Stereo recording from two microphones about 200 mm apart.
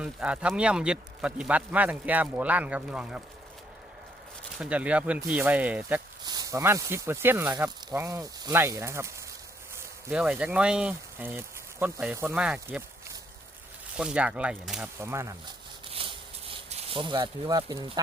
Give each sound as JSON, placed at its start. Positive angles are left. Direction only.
{"t": 0.0, "sound": "speech", "side_deg": -5}
{"t": 4.5, "sound": "speech", "side_deg": -5}
{"t": 6.2, "sound": "speech", "side_deg": -20}
{"t": 13.9, "sound": "speech", "side_deg": -5}
{"t": 15.9, "sound": "a sound", "side_deg": -25}